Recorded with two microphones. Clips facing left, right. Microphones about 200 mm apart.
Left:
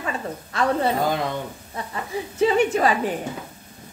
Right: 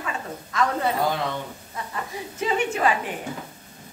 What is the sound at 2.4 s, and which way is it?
Speech, 35° left (ahead or behind).